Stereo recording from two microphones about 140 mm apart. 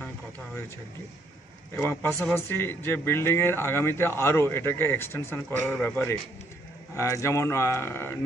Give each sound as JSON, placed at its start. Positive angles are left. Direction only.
{"t": 1.8, "sound": "speech", "side_deg": 15}